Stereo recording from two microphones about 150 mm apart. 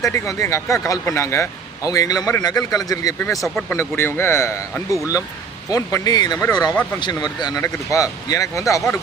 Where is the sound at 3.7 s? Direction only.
15° left (ahead or behind).